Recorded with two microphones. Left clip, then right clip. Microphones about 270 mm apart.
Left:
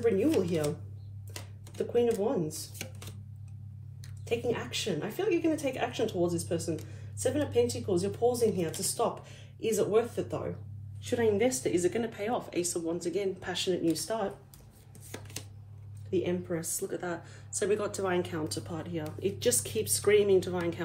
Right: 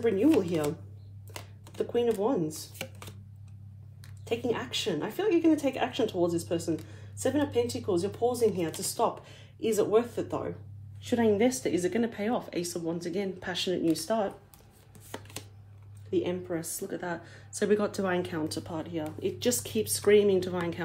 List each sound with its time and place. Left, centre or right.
0.0 s speech: right
1.9 s speech: right
5.0 s speech: right
16.1 s speech: right